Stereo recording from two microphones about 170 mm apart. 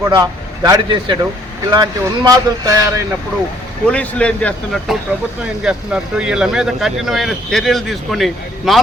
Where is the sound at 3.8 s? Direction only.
5° left (ahead or behind).